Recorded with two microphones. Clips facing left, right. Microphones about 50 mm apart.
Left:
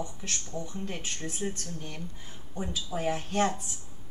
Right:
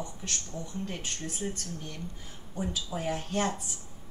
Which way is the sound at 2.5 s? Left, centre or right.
Centre.